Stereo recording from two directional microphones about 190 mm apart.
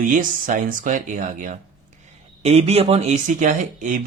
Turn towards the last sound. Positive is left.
turn(degrees=-40)  # may be behind; listen again after turning